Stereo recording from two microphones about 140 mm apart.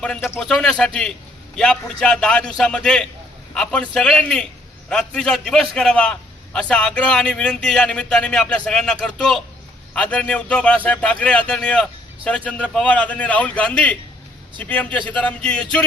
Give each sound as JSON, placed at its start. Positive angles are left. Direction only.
{"t": 0.0, "sound": "a man's voice", "side_deg": 5}